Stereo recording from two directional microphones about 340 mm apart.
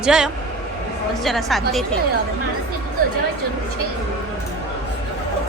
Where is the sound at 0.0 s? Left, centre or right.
Centre.